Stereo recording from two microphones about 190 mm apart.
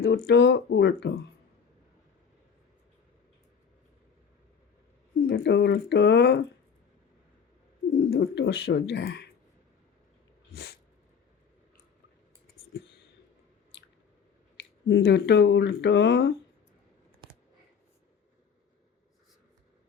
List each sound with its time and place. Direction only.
0.0 s speech: 65° left (ahead or behind)
5.3 s speech: 60° left (ahead or behind)
8.1 s speech: 65° left (ahead or behind)
10.5 s cat: 55° left (ahead or behind)
14.5 s speech: 65° left (ahead or behind)